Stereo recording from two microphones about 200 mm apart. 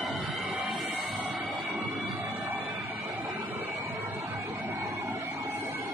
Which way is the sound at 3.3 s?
10° right (ahead or behind).